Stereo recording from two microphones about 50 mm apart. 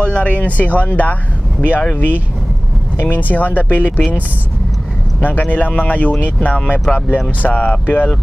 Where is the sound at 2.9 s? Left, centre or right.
Left.